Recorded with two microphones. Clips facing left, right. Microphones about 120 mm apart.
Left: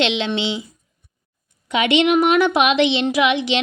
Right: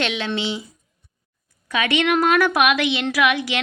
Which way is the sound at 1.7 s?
25° left (ahead or behind).